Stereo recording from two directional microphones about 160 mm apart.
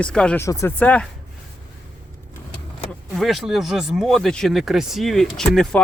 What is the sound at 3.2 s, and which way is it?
Speech, centre (ahead or behind).